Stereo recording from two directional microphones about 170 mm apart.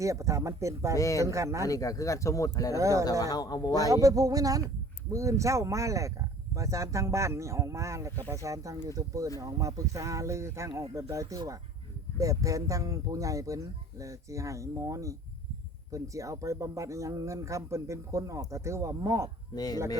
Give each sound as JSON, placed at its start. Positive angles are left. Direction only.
{"t": 0.0, "sound": "speech", "side_deg": -20}
{"t": 0.9, "sound": "speech", "side_deg": 20}
{"t": 1.2, "sound": "speech", "side_deg": -20}
{"t": 1.6, "sound": "speech", "side_deg": 20}
{"t": 2.7, "sound": "speech", "side_deg": -20}
{"t": 3.1, "sound": "speech", "side_deg": 20}
{"t": 3.8, "sound": "speech", "side_deg": -20}
{"t": 19.5, "sound": "speech", "side_deg": 20}